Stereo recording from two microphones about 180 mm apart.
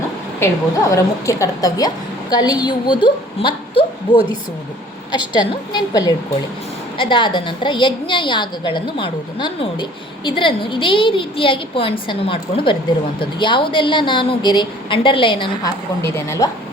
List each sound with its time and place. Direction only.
0.3 s a woman's voice: 15° left (ahead or behind)
16.0 s a woman's voice: 15° left (ahead or behind)